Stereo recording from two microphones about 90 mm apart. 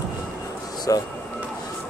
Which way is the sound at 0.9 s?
40° left (ahead or behind).